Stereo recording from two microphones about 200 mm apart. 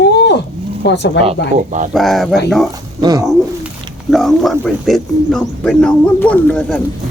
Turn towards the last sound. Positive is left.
turn(degrees=5)  # may be behind; listen again after turning